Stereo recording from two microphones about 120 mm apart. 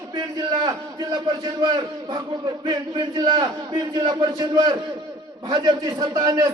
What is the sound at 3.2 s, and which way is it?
A man's voice, 35° right (ahead or behind).